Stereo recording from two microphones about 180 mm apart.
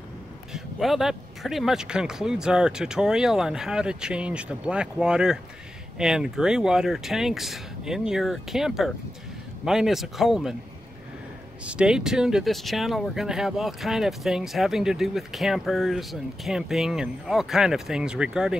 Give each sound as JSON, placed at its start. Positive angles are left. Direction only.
{"t": 0.5, "sound": "speech", "side_deg": 0}
{"t": 11.6, "sound": "speech", "side_deg": -5}